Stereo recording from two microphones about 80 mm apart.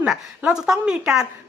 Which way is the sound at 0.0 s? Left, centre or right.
Centre.